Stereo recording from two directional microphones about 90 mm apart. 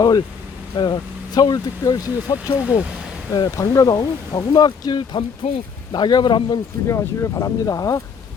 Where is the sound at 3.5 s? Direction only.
40° left (ahead or behind); by 5.5 s 65° left (ahead or behind).